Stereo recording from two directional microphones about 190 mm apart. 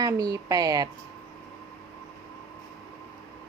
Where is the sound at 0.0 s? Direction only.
20° right (ahead or behind).